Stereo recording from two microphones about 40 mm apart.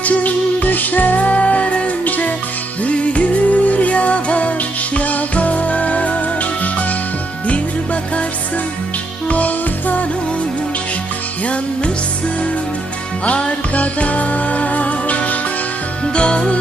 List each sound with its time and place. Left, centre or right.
0.0 s music: left
2.0 s music: left
2.8 s music: left
9.3 s music: left
13.2 s music: left
16.1 s music: left